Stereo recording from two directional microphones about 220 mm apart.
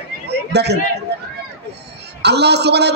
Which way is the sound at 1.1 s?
50° right (ahead or behind).